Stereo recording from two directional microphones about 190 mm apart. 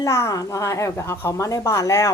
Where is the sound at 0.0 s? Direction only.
15° left (ahead or behind).